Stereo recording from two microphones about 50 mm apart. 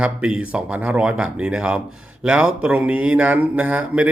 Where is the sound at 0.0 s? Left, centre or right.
Centre.